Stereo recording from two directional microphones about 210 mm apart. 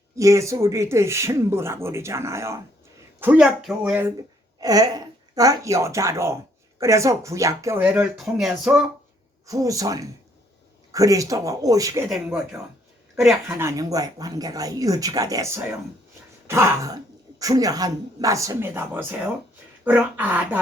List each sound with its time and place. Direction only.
0.2 s speech: 15° right (ahead or behind)
4.6 s speech: 15° right (ahead or behind); by 8.8 s centre (ahead or behind)
9.5 s speech: 15° right (ahead or behind)
12.0 s speech: centre (ahead or behind)
13.5 s speech: 10° right (ahead or behind)